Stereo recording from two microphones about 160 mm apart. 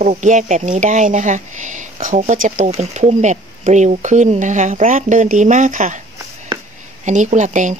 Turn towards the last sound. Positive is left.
turn(degrees=-50)  # may be behind; listen again after turning